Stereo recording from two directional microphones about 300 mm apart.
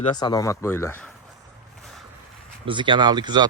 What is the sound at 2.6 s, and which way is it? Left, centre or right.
Speech, centre.